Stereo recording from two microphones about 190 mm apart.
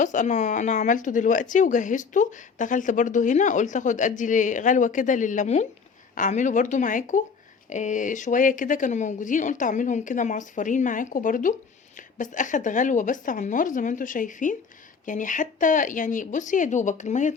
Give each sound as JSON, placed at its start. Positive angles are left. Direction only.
{"t": 0.0, "sound": "speech", "side_deg": 40}